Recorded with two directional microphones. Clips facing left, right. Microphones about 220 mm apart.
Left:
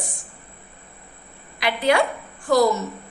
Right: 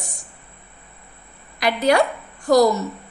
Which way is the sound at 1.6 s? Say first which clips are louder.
Right 2 dB; 40° right (ahead or behind).